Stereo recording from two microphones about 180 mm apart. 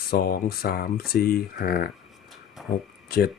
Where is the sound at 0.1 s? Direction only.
55° left (ahead or behind).